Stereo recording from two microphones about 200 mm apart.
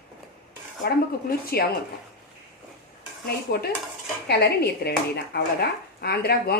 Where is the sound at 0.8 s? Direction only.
50° left (ahead or behind).